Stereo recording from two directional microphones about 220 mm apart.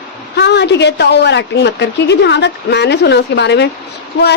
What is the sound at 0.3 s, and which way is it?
A woman's voice, 50° left (ahead or behind).